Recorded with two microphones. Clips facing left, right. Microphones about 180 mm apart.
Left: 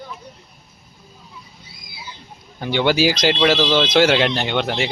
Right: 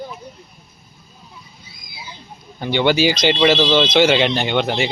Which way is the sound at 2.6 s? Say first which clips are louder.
Right 1 dB; centre (ahead or behind).